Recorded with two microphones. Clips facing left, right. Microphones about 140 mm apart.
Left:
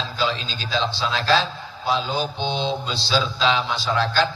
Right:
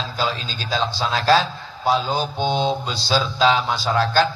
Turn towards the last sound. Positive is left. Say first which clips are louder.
# right 3 dB
turn(degrees=-40)  # may be behind; listen again after turning